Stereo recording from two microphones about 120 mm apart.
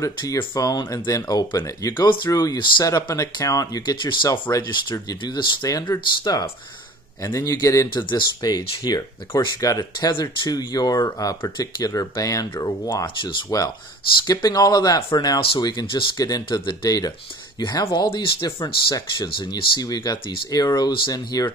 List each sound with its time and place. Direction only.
0.0 s speech: 30° left (ahead or behind)
4.3 s speech: 30° left (ahead or behind)
17.8 s speech: 40° left (ahead or behind)